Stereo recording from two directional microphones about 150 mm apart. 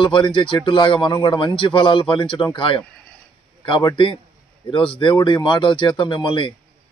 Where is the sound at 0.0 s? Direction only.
35° left (ahead or behind).